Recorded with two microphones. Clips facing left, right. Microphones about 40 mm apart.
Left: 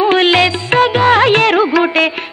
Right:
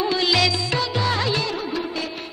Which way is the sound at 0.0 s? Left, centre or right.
Left.